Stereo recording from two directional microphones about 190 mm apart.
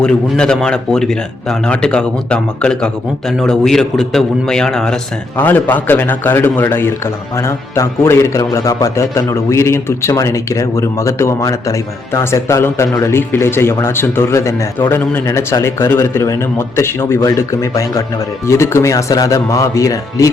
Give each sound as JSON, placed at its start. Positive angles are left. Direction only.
{"t": 0.0, "sound": "a man's voice", "side_deg": 5}